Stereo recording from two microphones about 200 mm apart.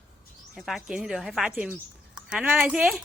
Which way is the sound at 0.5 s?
Centre (ahead or behind).